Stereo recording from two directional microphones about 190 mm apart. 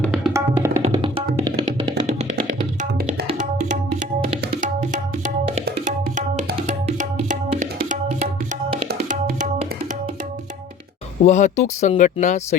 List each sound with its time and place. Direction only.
0.3 s tabla: 15° right (ahead or behind)
0.8 s music: 30° right (ahead or behind)
3.3 s tabla: 40° right (ahead or behind)
5.8 s music: 40° right (ahead or behind)
8.9 s music: 55° right (ahead or behind)
11.3 s speech: 40° left (ahead or behind)